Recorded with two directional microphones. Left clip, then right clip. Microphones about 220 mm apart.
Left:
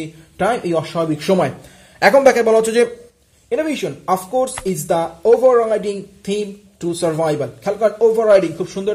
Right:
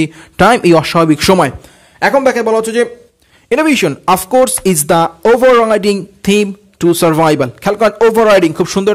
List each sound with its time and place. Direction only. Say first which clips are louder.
0.0 s speech: right 10 dB; 50° right (ahead or behind)
2.0 s a man's voice: even; 10° right (ahead or behind)
3.4 s speech: right 9 dB; 45° right (ahead or behind)